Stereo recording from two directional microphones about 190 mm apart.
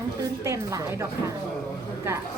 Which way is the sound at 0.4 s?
15° right (ahead or behind).